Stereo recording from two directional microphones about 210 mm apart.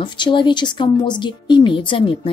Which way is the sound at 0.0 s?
20° left (ahead or behind).